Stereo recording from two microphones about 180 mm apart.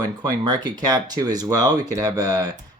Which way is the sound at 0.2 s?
20° right (ahead or behind).